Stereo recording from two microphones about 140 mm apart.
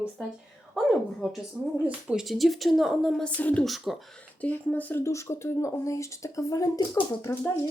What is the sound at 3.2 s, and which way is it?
Speech, 10° left (ahead or behind).